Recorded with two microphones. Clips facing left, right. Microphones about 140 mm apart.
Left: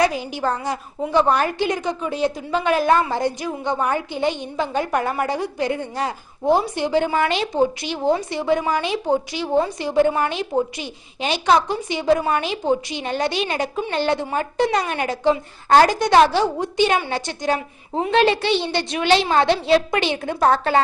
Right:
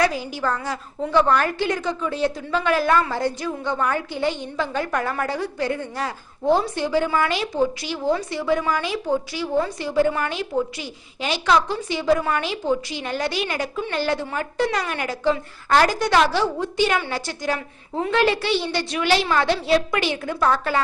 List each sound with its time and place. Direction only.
0.0 s a woman's voice: 20° left (ahead or behind)